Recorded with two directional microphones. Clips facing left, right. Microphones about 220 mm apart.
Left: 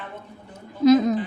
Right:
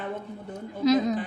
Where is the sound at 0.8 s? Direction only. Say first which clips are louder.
Left 6 dB; 50° left (ahead or behind).